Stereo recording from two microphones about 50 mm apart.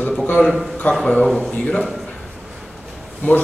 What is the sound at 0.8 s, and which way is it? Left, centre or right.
Speech, left.